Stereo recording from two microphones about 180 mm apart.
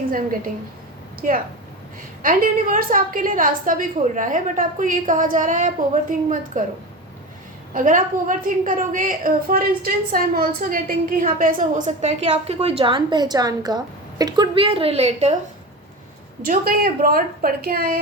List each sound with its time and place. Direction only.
0.1 s a woman's voice: 50° right (ahead or behind)
7.7 s a woman's voice: 50° right (ahead or behind)
16.4 s a woman's voice: 55° right (ahead or behind)